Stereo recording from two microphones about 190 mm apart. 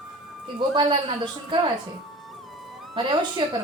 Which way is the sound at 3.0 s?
25° right (ahead or behind).